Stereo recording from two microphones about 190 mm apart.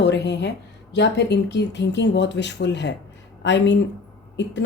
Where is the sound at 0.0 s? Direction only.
65° left (ahead or behind).